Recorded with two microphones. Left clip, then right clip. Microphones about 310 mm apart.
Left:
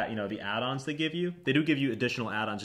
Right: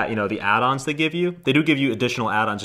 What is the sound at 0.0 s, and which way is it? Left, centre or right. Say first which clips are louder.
Speech: right 11 dB; right.